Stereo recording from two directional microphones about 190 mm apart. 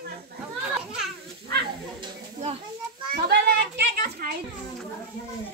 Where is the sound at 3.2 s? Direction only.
60° right (ahead or behind).